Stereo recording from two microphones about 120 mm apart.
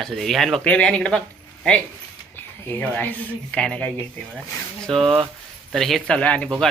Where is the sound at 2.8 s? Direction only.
10° left (ahead or behind).